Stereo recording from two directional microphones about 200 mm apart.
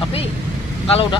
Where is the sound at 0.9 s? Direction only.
30° left (ahead or behind).